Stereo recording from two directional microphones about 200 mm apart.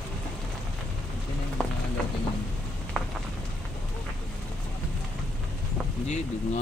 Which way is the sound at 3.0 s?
Centre (ahead or behind).